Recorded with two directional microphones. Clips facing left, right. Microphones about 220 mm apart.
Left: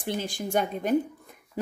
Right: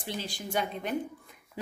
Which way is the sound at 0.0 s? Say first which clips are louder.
Left 6 dB; 50° left (ahead or behind).